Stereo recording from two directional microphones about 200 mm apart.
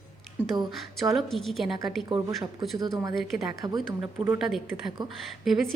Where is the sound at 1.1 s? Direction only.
Centre (ahead or behind).